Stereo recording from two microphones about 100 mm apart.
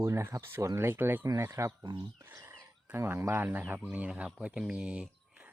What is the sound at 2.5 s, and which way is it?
Speech, 25° right (ahead or behind).